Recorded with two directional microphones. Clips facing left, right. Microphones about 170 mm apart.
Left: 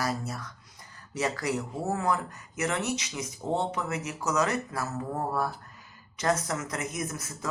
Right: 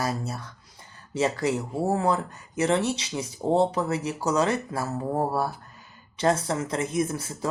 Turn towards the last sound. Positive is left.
turn(degrees=-30)  # may be behind; listen again after turning